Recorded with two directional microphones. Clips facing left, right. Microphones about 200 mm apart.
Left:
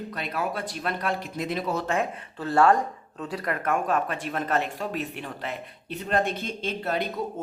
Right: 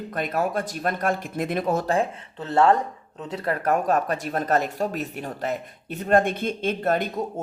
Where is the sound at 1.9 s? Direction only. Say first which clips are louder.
Right 4 dB; 25° right (ahead or behind).